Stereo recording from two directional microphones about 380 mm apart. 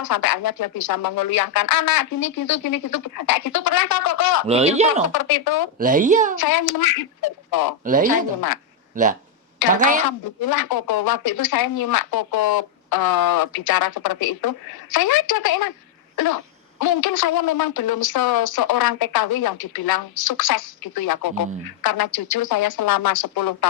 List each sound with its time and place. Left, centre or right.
0.0 s speech: left
4.4 s speech: centre
5.0 s a woman's voice: left
5.8 s speech: right
6.4 s a woman's voice: left
7.9 s speech: right
10.0 s a woman's voice: left
16.1 s throat clearing: left
16.8 s a woman's voice: left